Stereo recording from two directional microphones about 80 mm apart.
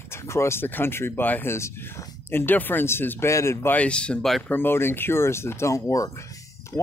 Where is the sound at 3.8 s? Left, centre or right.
Centre.